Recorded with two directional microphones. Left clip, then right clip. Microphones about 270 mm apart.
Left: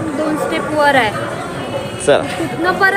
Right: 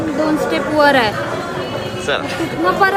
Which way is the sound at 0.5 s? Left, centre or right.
Right.